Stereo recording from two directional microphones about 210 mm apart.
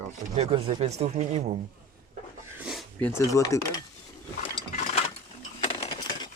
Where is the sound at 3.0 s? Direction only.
10° left (ahead or behind).